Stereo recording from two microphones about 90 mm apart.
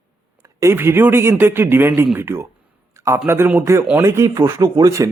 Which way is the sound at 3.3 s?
25° right (ahead or behind).